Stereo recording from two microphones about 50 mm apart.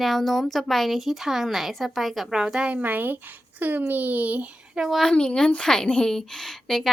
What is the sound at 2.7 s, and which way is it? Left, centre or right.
A child's voice, right.